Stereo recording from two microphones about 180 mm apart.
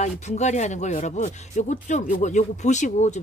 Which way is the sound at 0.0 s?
40° left (ahead or behind).